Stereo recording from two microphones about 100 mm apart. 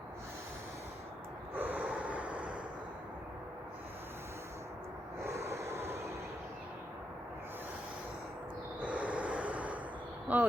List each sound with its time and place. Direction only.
1.5 s gasp: 15° right (ahead or behind)
5.2 s snort: 30° right (ahead or behind)
5.9 s vehicle: 30° right (ahead or behind)
8.8 s a sound: 15° right (ahead or behind)
10.3 s speech: 15° right (ahead or behind)